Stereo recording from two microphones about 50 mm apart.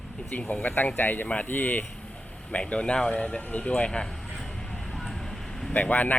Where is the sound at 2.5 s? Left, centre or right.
Left.